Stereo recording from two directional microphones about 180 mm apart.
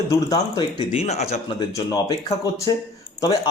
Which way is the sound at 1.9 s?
20° left (ahead or behind).